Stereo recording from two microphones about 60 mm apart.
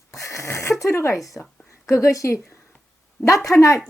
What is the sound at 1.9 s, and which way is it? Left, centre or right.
Speech, left.